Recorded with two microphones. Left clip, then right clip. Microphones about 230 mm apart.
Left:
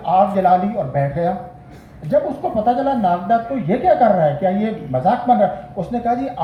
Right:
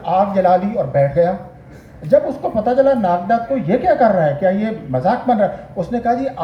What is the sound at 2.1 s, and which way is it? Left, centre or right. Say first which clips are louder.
Speech: right 3 dB; right.